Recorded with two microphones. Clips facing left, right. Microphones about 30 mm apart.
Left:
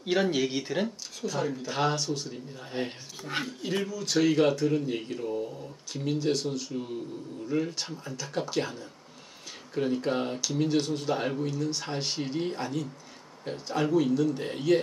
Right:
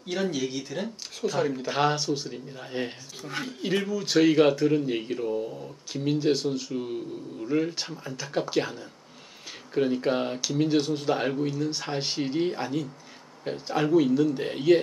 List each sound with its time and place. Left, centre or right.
0.0 s speech: centre
1.2 s speech: centre